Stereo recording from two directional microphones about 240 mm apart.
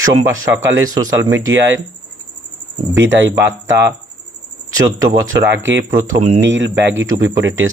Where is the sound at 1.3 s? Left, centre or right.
Right.